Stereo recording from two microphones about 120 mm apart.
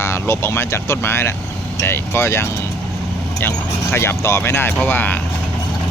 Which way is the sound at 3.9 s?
20° left (ahead or behind).